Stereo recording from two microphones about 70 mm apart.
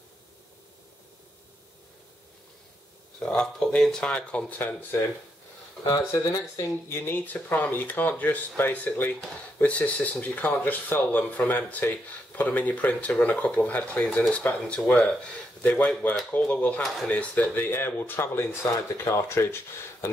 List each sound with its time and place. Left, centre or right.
3.2 s speech: centre
4.5 s speech: left
6.2 s speech: left
7.0 s speech: left